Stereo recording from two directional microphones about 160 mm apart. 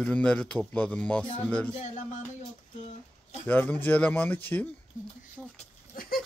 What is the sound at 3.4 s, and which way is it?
Speech, 10° left (ahead or behind).